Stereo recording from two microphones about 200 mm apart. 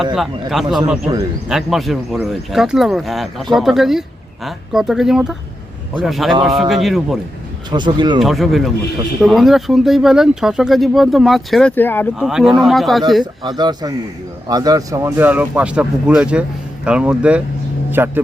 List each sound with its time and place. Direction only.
0.0 s speech: centre (ahead or behind)
7.7 s speech: 25° right (ahead or behind)
8.2 s speech: centre (ahead or behind)
12.2 s speech: centre (ahead or behind)
13.4 s speech: 20° right (ahead or behind)